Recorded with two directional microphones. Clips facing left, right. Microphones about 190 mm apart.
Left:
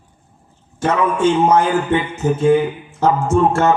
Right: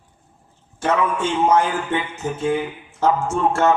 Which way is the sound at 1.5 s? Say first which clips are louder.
Left 4 dB; 40° left (ahead or behind).